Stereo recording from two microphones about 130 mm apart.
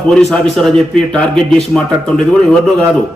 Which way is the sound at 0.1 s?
5° left (ahead or behind).